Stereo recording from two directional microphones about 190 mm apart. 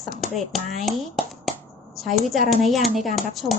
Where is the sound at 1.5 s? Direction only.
Centre (ahead or behind).